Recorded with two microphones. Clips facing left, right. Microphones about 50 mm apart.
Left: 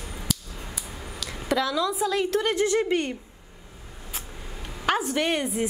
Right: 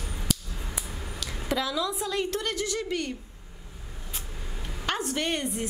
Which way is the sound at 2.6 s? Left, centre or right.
Left.